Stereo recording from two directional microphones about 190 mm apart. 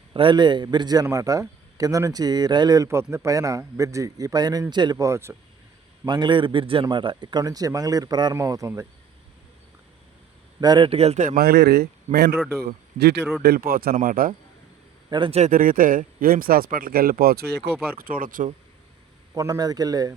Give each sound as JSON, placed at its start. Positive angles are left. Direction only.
{"t": 0.1, "sound": "a man's voice", "side_deg": -25}
{"t": 6.1, "sound": "a man's voice", "side_deg": -25}
{"t": 10.6, "sound": "a man's voice", "side_deg": -25}
{"t": 12.1, "sound": "speech", "side_deg": -40}
{"t": 12.6, "sound": "a man's voice", "side_deg": -60}
{"t": 15.1, "sound": "a man's voice", "side_deg": -30}
{"t": 17.9, "sound": "a man's voice", "side_deg": -50}
{"t": 19.3, "sound": "a man's voice", "side_deg": -15}